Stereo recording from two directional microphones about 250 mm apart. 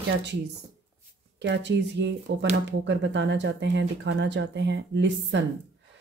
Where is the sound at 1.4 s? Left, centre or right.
Right.